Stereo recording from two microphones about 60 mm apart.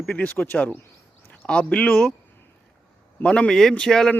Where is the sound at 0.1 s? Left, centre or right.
Left.